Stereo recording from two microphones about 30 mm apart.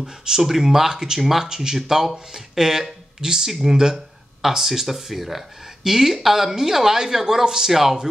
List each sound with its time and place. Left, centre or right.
0.0 s speech: centre